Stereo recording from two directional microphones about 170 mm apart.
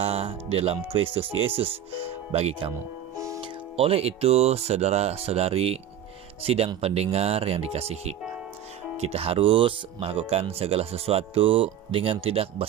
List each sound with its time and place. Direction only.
0.0 s speech: 35° right (ahead or behind)
3.2 s music: 20° right (ahead or behind)
3.4 s speech: 35° right (ahead or behind)